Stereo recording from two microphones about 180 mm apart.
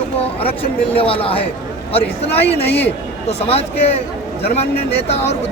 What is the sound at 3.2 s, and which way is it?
A man's voice, 35° left (ahead or behind).